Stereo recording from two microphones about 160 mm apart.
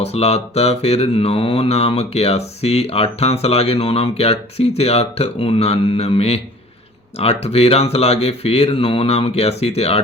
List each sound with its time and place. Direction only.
0.0 s speech: 40° left (ahead or behind)